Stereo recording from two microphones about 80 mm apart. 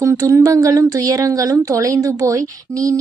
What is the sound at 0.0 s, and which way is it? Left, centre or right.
Speech, right.